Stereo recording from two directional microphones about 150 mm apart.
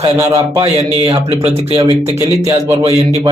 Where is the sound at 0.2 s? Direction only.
20° right (ahead or behind).